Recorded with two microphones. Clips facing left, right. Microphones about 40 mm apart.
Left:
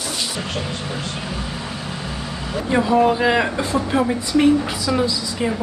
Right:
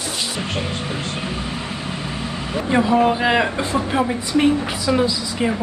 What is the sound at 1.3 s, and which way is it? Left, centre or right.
Vehicle, right.